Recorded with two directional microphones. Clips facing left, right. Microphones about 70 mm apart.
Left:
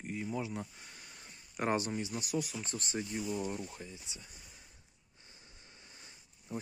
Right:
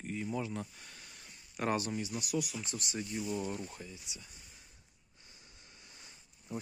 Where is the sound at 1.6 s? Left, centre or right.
Left.